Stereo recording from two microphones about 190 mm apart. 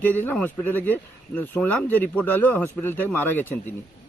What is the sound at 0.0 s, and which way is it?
Speech, 10° left (ahead or behind).